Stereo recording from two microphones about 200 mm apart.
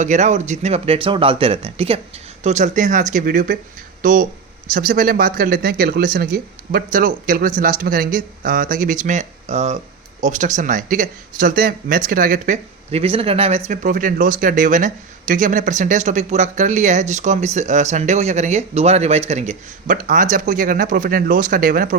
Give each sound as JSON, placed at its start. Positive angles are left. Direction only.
{"t": 0.0, "sound": "speech", "side_deg": -35}
{"t": 13.7, "sound": "speech", "side_deg": -45}